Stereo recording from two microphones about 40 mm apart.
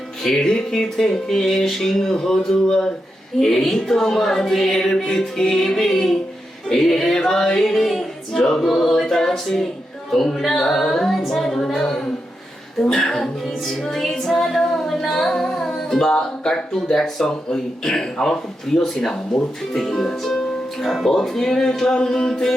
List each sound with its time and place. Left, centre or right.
0.3 s music: centre
0.7 s speech: centre
8.6 s a capella: centre
8.9 s speech: centre
14.3 s music: centre
17.5 s speech: centre
20.8 s a capella: centre
21.1 s speech: centre